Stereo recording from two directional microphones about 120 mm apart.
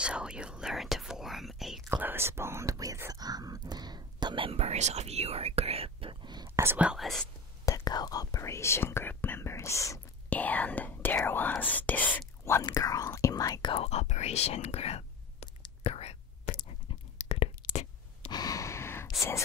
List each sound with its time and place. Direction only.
0.0 s whispering: 10° right (ahead or behind)
1.9 s whispering: 20° right (ahead or behind); by 6.5 s 35° right (ahead or behind)
6.5 s speech: 20° right (ahead or behind)
6.9 s speech: centre (ahead or behind)
7.6 s speech: 30° left (ahead or behind)
10.3 s speech: 15° left (ahead or behind)
12.6 s speech: 30° left (ahead or behind)
13.7 s speech: 60° left (ahead or behind)
15.8 s whispering: 60° left (ahead or behind); by 16.6 s 75° left (ahead or behind)
17.3 s whispering: 55° left (ahead or behind)
18.3 s gasp: 30° left (ahead or behind)